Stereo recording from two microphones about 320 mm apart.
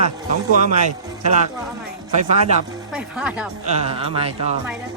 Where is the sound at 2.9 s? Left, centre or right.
Centre.